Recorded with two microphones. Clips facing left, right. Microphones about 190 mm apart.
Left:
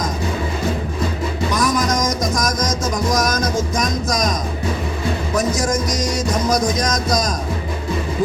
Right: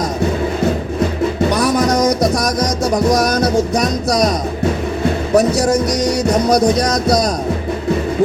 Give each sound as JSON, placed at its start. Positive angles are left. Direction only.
{"t": 1.5, "sound": "music", "side_deg": -65}
{"t": 2.2, "sound": "music", "side_deg": -35}
{"t": 5.3, "sound": "music", "side_deg": -65}